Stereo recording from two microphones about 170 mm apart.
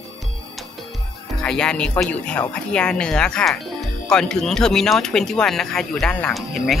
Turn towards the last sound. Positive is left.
turn(degrees=0)  # may be behind; listen again after turning